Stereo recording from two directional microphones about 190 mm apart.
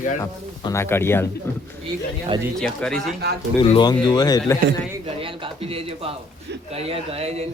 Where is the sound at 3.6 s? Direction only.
25° left (ahead or behind).